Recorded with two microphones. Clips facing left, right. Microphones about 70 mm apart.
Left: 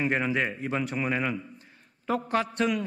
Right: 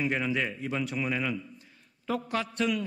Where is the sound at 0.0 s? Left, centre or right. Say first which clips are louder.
Left 3 dB; left.